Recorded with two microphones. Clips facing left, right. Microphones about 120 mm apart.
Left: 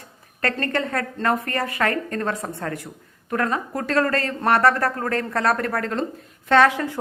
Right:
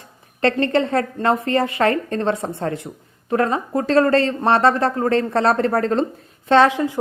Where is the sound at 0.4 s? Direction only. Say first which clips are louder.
Right 7 dB; 25° right (ahead or behind).